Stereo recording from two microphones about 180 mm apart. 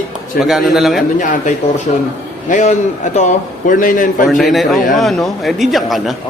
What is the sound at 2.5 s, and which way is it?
A man's voice, 40° left (ahead or behind).